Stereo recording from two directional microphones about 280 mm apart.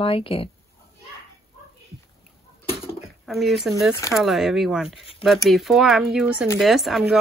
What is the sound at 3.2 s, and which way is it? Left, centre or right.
Speech, centre.